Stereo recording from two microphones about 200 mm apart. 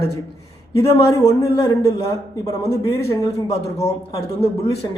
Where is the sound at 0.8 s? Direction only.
15° left (ahead or behind).